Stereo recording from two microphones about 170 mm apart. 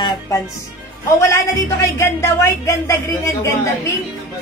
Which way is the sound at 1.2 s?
20° left (ahead or behind).